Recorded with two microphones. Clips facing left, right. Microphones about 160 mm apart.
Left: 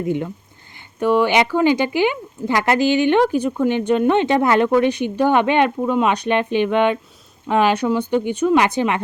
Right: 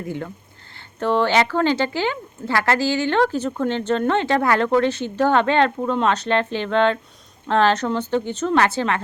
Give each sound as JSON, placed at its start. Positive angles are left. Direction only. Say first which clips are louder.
{"t": 0.0, "sound": "speech", "louder": "left 7 dB", "side_deg": 20}